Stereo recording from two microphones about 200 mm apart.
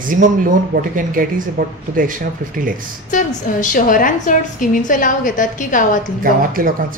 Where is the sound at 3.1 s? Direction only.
40° left (ahead or behind).